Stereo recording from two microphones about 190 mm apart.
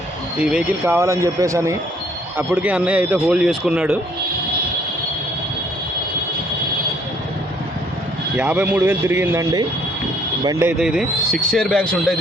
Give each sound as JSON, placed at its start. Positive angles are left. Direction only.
{"t": 0.3, "sound": "speech", "side_deg": -5}
{"t": 8.4, "sound": "speech", "side_deg": -5}
{"t": 10.7, "sound": "speech", "side_deg": -5}